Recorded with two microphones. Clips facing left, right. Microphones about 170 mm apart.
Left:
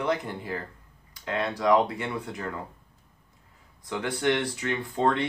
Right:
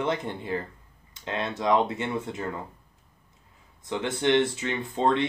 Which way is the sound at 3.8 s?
25° right (ahead or behind).